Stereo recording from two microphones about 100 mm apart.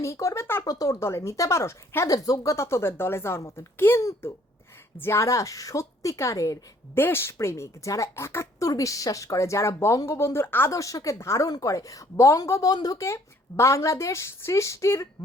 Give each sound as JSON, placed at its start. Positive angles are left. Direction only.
{"t": 0.0, "sound": "a woman's voice", "side_deg": 30}
{"t": 0.6, "sound": "a woman's voice", "side_deg": 35}
{"t": 6.9, "sound": "a woman's voice", "side_deg": 25}
{"t": 10.7, "sound": "a woman's voice", "side_deg": 35}